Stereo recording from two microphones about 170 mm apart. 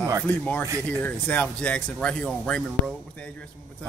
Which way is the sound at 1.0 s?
10° left (ahead or behind).